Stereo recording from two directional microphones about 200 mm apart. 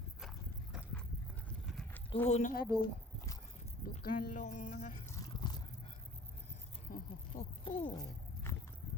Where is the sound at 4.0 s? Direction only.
45° left (ahead or behind).